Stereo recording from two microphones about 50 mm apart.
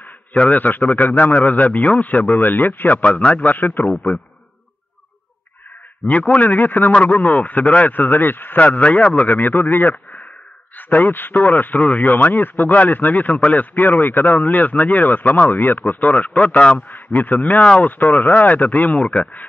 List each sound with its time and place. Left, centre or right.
0.4 s speech: left
3.0 s a man's voice: left
3.4 s speech: left
6.0 s speech: left
8.5 s speech: left